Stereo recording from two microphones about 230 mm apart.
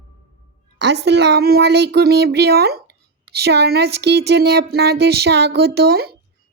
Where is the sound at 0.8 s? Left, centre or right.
Right.